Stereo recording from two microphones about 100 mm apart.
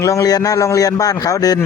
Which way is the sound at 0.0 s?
35° left (ahead or behind).